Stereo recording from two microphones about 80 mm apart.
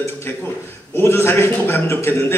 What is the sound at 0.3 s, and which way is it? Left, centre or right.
A man's voice, left.